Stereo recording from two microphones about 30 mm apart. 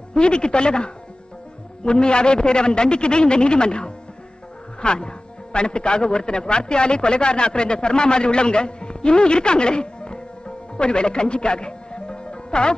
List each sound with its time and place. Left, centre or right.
0.1 s a man's voice: left